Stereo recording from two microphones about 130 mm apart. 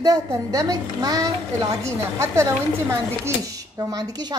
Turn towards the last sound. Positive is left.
turn(degrees=-30)  # may be behind; listen again after turning